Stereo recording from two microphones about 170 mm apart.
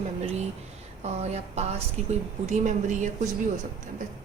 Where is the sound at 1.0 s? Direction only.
40° right (ahead or behind).